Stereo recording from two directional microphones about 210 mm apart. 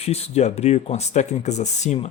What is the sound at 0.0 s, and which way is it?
Speech, 30° left (ahead or behind).